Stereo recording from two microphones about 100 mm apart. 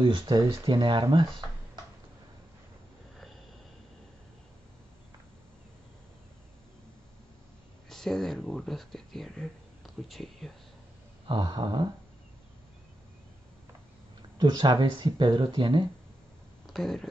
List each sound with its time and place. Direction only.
0.0 s speech: 55° right (ahead or behind)
7.9 s speech: 5° left (ahead or behind)
11.2 s speech: 50° right (ahead or behind)
14.4 s speech: 45° right (ahead or behind)
16.7 s speech: 5° left (ahead or behind)